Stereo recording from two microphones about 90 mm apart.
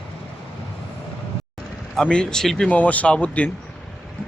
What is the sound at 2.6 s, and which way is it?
Speech, 15° left (ahead or behind).